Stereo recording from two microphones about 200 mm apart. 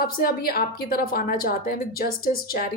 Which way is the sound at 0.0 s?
50° left (ahead or behind).